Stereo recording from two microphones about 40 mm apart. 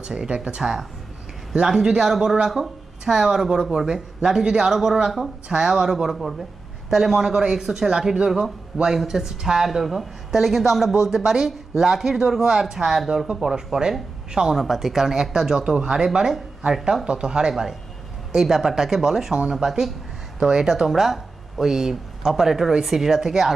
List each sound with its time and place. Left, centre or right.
0.0 s speech: right
0.6 s speech: centre
14.5 s speech: centre
17.1 s speech: right
18.3 s speech: centre